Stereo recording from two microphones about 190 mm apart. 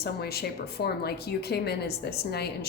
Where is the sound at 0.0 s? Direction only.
55° left (ahead or behind).